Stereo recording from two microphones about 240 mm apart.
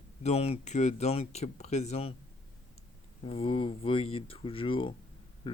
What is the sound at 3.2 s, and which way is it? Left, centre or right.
Speech, left.